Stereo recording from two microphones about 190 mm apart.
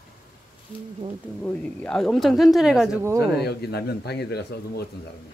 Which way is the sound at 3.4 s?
60° left (ahead or behind).